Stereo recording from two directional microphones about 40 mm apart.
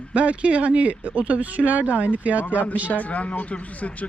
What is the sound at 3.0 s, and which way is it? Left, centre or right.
Speech, left.